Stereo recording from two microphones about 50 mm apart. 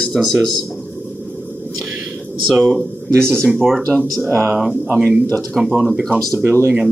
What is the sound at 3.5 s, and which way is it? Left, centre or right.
Speech, centre.